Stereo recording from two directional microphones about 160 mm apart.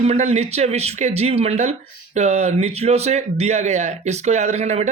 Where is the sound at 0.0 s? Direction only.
45° right (ahead or behind).